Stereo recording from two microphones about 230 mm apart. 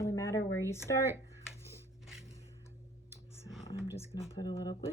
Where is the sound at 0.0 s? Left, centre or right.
Centre.